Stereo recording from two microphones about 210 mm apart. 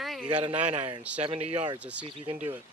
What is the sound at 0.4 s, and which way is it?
Speech, 30° right (ahead or behind).